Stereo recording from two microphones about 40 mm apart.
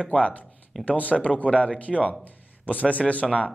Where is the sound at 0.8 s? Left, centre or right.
Left.